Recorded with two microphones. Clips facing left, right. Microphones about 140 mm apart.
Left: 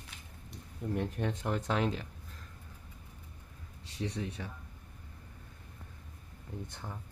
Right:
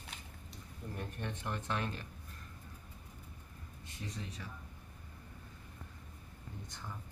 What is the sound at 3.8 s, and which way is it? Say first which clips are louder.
Speech: left 9 dB; 80° left.